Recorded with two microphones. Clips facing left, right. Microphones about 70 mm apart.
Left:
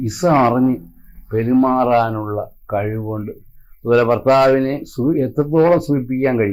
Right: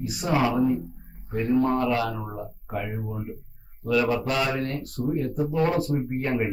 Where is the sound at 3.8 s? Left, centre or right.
Left.